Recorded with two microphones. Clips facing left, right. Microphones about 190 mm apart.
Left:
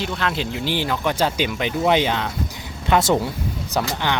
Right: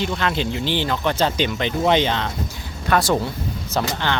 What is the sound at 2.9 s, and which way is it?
Speech, 20° left (ahead or behind).